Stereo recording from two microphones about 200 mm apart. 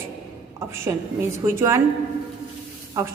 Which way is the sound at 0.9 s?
15° right (ahead or behind).